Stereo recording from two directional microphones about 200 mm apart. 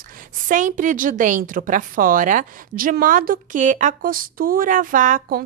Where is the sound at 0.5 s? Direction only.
40° right (ahead or behind).